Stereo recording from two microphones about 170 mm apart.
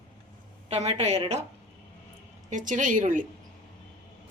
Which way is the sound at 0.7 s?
40° right (ahead or behind).